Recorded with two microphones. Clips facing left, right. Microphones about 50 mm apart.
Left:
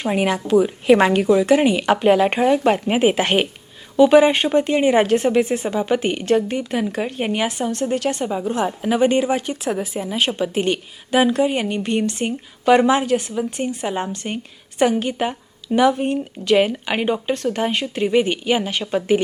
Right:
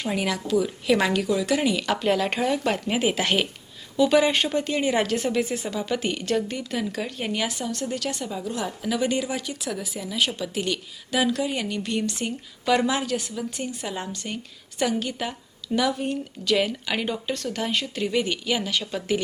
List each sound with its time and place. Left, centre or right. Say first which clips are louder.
0.0 s a woman's voice: left 6 dB; left